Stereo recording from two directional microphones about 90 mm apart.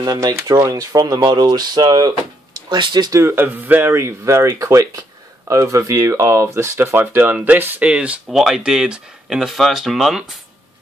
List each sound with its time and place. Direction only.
0.2 s speech: 40° right (ahead or behind); by 3.1 s 55° right (ahead or behind)
3.1 s speech: 30° right (ahead or behind); by 10.3 s 5° right (ahead or behind)